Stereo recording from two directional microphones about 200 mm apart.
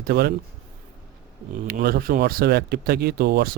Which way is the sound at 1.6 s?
50° right (ahead or behind).